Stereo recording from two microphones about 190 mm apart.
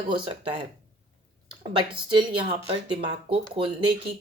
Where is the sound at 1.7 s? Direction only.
25° right (ahead or behind).